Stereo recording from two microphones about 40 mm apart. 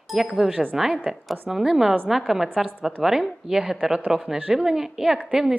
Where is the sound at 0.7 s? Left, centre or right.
Centre.